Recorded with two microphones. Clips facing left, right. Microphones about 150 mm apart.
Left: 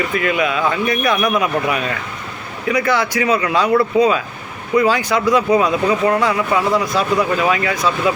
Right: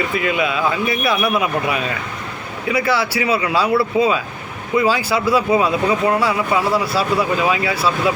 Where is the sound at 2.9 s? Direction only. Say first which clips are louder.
Left 2 dB; 10° right (ahead or behind).